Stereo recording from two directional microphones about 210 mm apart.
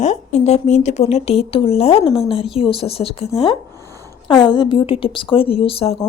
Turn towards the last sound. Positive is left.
turn(degrees=25)  # may be behind; listen again after turning